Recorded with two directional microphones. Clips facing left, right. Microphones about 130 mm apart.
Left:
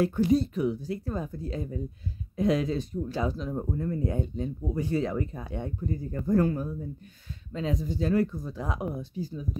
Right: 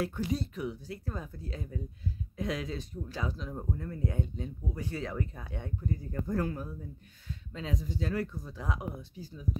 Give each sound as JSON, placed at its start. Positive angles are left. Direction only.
{"t": 0.0, "sound": "speech", "side_deg": 35}
{"t": 6.2, "sound": "speech", "side_deg": 40}